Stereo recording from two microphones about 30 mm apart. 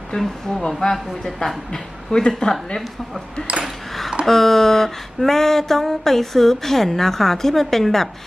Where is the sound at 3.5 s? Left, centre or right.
Right.